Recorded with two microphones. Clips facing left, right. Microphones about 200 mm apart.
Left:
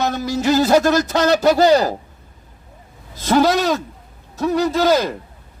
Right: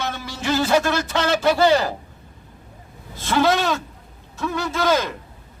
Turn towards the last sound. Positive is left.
turn(degrees=35)  # may be behind; listen again after turning